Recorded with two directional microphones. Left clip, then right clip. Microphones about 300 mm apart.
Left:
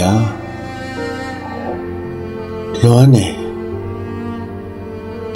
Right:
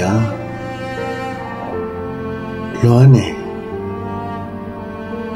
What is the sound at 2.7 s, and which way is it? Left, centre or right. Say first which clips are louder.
Speech: left 2 dB; centre.